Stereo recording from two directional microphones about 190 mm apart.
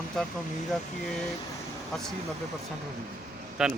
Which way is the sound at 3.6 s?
5° right (ahead or behind).